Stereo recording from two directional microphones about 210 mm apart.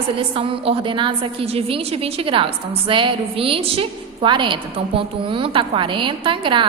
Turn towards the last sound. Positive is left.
turn(degrees=-25)  # may be behind; listen again after turning